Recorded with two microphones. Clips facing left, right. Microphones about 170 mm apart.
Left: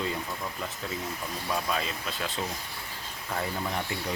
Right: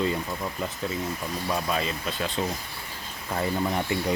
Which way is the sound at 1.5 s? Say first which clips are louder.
Right 2 dB; centre (ahead or behind).